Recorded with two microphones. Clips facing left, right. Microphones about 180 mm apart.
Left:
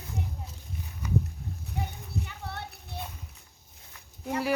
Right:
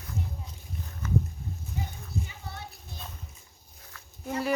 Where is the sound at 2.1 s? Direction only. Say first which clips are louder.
Left 1 dB; 65° left (ahead or behind).